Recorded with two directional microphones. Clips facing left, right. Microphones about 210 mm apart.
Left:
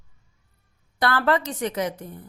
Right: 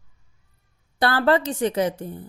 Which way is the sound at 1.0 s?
30° right (ahead or behind).